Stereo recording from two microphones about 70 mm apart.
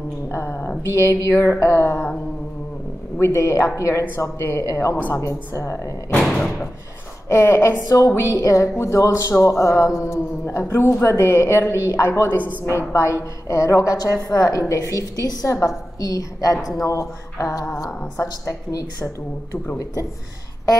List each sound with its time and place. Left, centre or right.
0.3 s speech: left
3.2 s a woman's voice: left
6.2 s slam: centre
7.2 s a woman's voice: left